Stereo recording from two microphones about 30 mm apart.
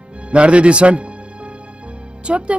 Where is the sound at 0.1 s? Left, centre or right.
Right.